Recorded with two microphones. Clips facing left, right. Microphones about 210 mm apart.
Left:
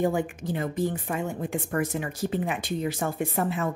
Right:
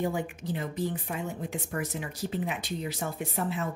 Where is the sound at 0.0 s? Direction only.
50° left (ahead or behind).